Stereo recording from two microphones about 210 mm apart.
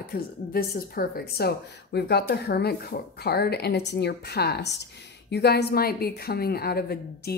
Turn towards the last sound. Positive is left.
turn(degrees=50)  # may be behind; listen again after turning